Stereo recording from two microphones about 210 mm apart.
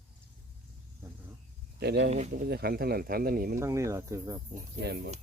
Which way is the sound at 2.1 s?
35° right (ahead or behind).